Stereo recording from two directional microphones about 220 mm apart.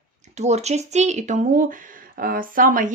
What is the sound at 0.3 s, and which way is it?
Speech, 30° right (ahead or behind).